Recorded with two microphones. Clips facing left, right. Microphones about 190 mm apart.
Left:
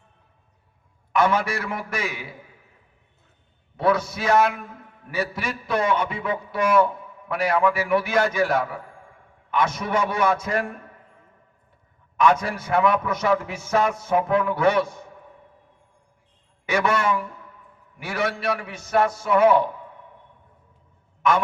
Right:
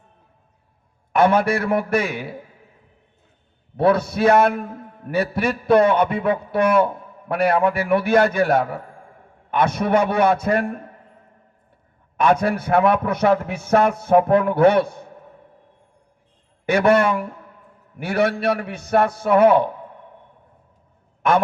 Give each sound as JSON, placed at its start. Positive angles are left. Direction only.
{"t": 1.1, "sound": "a man's voice", "side_deg": -60}
{"t": 3.8, "sound": "a man's voice", "side_deg": -60}
{"t": 12.1, "sound": "a man's voice", "side_deg": -60}
{"t": 16.6, "sound": "a man's voice", "side_deg": -60}
{"t": 21.2, "sound": "a man's voice", "side_deg": -55}